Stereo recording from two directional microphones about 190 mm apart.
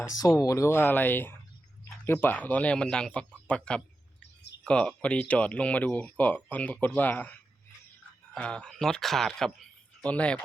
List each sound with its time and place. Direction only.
0.0 s a man's voice: 20° left (ahead or behind)